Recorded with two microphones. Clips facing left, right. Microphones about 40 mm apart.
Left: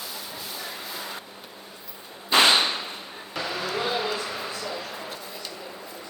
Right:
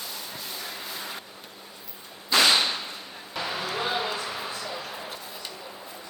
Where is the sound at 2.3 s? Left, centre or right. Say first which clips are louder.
Left 2 dB; left.